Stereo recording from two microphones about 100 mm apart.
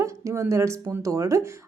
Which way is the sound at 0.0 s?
30° right (ahead or behind).